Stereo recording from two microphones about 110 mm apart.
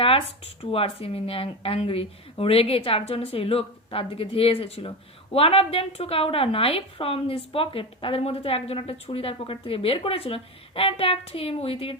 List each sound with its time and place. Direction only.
0.6 s speech: 60° left (ahead or behind)